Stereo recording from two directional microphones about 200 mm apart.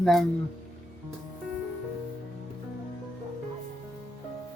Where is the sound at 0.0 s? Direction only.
Centre (ahead or behind).